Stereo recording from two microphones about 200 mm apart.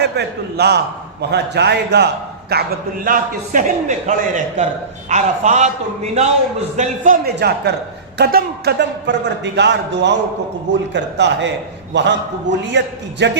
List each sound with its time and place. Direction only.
0.0 s a man's voice: 55° right (ahead or behind); by 7.2 s 40° right (ahead or behind)
7.3 s a man's voice: 55° right (ahead or behind)